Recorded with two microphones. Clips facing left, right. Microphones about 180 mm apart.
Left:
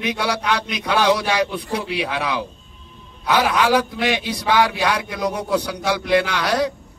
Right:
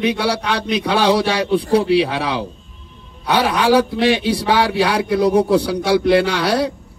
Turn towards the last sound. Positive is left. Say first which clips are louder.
# right 3 dB
turn(degrees=-30)  # may be behind; listen again after turning